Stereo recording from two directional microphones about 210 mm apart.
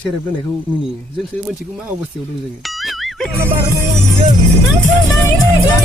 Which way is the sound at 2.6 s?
Centre (ahead or behind).